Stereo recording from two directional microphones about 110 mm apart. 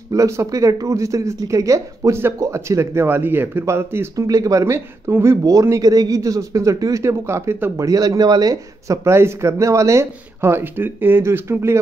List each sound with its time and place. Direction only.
0.1 s speech: 30° right (ahead or behind)